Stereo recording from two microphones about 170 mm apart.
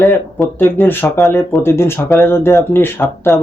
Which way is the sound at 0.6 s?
10° left (ahead or behind).